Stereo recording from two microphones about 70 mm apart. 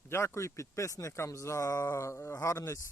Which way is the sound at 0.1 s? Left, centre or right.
Left.